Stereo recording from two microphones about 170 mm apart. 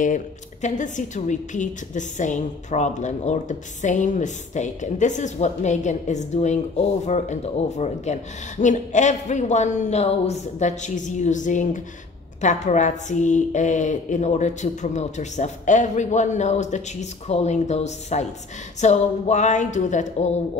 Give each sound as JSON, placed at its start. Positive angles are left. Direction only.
{"t": 0.0, "sound": "a woman's voice", "side_deg": 45}